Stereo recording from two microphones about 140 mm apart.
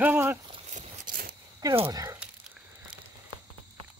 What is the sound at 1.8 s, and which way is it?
Speech, 20° right (ahead or behind).